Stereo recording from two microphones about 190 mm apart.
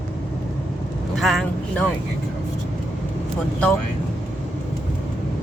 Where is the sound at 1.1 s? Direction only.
Centre (ahead or behind).